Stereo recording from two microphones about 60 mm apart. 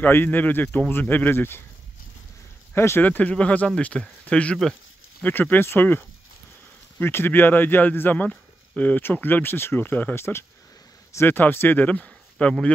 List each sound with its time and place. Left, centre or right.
0.0 s speech: left
2.7 s speech: left
3.0 s speech: left
5.2 s speech: left
11.2 s speech: left
11.8 s speech: left